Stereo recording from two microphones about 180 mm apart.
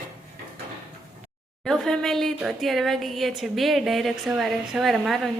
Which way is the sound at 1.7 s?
5° left (ahead or behind).